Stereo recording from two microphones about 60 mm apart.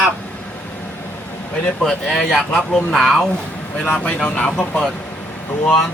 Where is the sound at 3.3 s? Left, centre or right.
Left.